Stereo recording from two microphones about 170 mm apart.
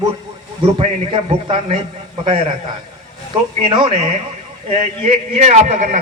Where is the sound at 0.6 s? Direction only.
30° right (ahead or behind).